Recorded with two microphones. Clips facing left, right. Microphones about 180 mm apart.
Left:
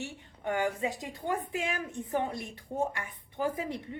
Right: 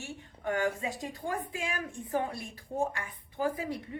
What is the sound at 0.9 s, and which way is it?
A woman's voice, 20° left (ahead or behind).